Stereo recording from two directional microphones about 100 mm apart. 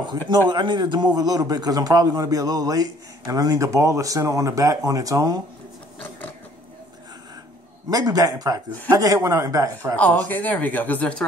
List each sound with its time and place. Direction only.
0.5 s a man's voice: 50° right (ahead or behind)
7.9 s a man's voice: 40° right (ahead or behind)
9.9 s speech: 15° left (ahead or behind)